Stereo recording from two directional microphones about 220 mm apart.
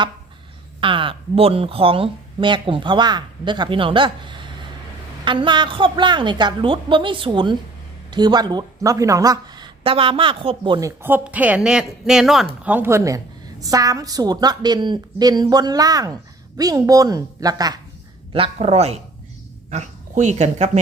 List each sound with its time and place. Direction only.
0.8 s a woman's voice: 25° right (ahead or behind)